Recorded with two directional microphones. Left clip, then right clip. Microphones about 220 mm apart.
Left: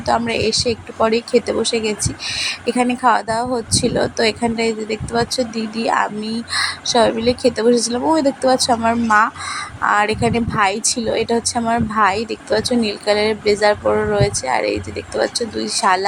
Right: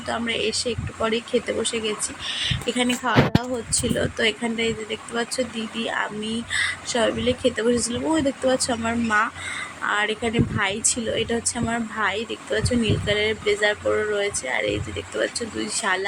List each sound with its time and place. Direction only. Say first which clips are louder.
0.0 s speech: left 7 dB; 15° left (ahead or behind)